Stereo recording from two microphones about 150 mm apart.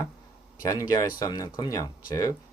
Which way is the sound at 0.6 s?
25° left (ahead or behind).